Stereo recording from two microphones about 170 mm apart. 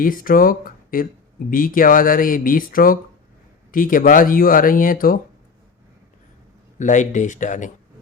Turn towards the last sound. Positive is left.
turn(degrees=45)  # may be behind; listen again after turning